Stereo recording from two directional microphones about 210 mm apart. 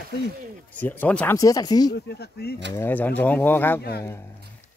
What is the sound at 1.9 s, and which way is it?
Speech, 50° left (ahead or behind).